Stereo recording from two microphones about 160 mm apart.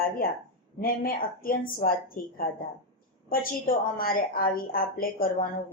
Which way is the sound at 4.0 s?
65° left (ahead or behind).